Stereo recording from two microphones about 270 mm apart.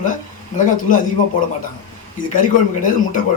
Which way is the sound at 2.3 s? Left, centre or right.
Left.